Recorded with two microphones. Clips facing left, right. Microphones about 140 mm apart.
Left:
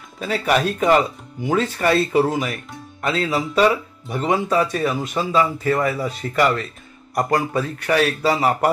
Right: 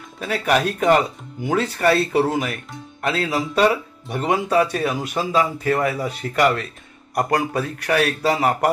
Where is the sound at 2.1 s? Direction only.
50° right (ahead or behind).